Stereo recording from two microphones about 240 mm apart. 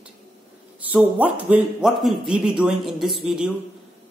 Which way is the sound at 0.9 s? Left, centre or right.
Centre.